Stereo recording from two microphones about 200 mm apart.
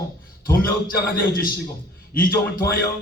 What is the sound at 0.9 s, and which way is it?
A man's voice, 45° left (ahead or behind).